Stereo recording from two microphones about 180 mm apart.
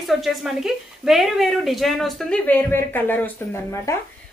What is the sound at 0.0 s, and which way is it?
A woman's voice, centre (ahead or behind).